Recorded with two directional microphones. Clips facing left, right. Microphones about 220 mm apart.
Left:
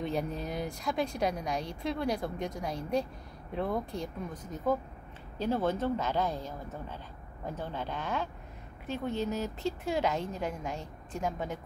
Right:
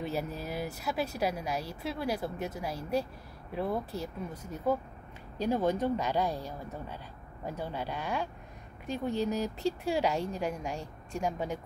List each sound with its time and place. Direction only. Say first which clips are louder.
0.0 s speech: left 1 dB; 5° right (ahead or behind)